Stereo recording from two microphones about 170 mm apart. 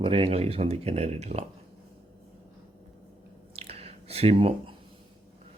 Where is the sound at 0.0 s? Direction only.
35° right (ahead or behind).